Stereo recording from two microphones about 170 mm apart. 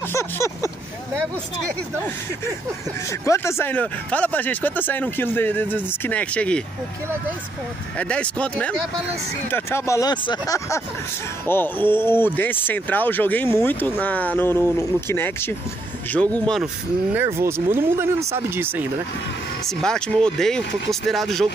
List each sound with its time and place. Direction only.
0.1 s speech: 15° left (ahead or behind)
3.1 s speech: 15° left (ahead or behind)
8.0 s speech: 5° left (ahead or behind)
17.1 s speech: 15° right (ahead or behind)
19.8 s speech: 5° left (ahead or behind)